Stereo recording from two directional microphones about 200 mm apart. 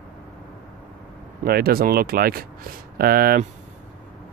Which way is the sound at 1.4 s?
50° right (ahead or behind).